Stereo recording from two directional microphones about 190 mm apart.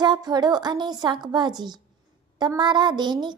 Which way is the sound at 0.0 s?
20° right (ahead or behind).